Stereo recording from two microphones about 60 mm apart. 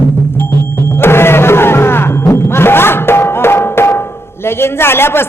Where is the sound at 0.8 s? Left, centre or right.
Left.